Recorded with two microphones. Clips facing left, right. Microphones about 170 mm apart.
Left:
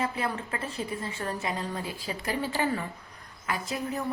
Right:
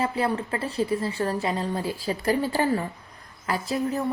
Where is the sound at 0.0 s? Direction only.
35° right (ahead or behind).